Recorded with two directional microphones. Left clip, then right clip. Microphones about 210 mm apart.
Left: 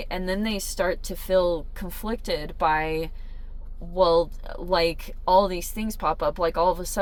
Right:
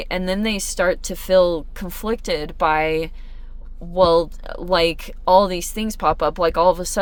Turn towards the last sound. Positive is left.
turn(degrees=-40)  # may be behind; listen again after turning